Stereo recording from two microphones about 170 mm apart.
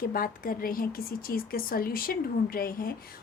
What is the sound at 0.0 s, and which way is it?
A woman's voice, 55° left (ahead or behind).